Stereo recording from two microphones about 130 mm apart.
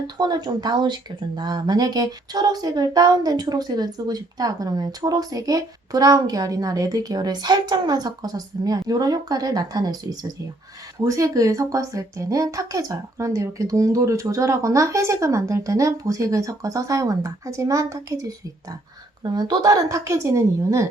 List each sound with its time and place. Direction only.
0.2 s speech: 30° right (ahead or behind)